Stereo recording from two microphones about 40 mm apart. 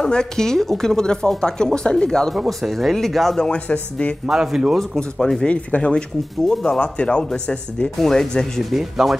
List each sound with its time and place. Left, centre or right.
0.0 s a woman's voice: centre
2.3 s speech: centre
3.5 s speech: left
4.3 s speech: centre
4.7 s a woman's voice: centre
5.4 s speech: left
6.4 s a woman's voice: centre
6.8 s speech: left
8.0 s a woman's voice: centre
8.6 s speech: centre